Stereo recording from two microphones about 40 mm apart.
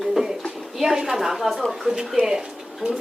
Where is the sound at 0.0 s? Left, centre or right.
Centre.